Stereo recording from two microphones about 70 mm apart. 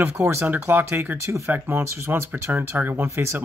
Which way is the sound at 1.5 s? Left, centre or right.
Right.